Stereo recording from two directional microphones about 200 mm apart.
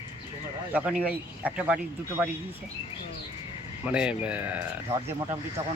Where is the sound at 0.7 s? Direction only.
5° right (ahead or behind).